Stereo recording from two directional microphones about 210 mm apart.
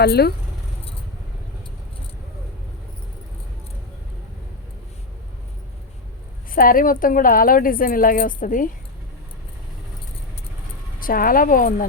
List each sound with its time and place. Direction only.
0.0 s speech: 50° left (ahead or behind)
6.5 s a woman's voice: 40° left (ahead or behind)
11.0 s speech: 45° left (ahead or behind)